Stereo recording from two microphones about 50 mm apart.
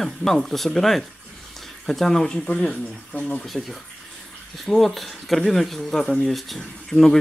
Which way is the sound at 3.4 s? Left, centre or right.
Centre.